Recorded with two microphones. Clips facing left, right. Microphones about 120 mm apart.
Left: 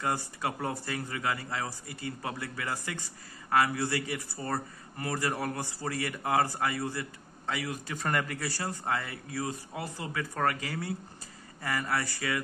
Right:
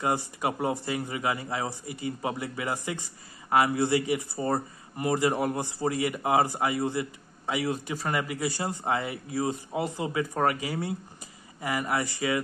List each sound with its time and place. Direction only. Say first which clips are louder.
0.0 s a man's voice: right 4 dB; 20° right (ahead or behind)
7.9 s speech: right 2 dB; 5° right (ahead or behind)